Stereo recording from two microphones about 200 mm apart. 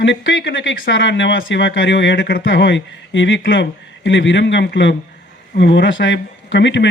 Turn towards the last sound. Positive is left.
turn(degrees=65)  # may be behind; listen again after turning